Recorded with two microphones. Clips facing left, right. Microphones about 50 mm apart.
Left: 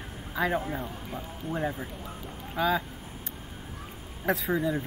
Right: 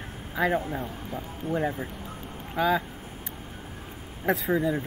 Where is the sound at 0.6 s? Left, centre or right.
Centre.